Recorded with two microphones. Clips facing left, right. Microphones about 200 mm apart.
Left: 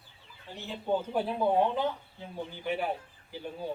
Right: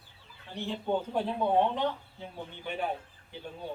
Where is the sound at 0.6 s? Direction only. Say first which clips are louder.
Even; 5° left (ahead or behind).